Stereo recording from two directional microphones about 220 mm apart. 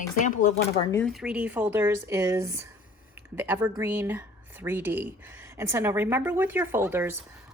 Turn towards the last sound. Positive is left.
turn(degrees=-10)  # may be behind; listen again after turning